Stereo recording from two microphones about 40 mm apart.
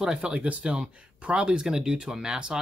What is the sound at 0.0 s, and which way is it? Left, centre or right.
Speech, right.